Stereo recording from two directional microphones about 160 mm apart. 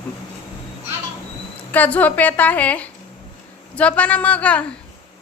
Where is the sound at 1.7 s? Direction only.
10° left (ahead or behind).